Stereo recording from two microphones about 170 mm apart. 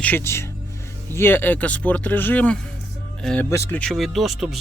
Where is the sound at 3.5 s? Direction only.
15° left (ahead or behind).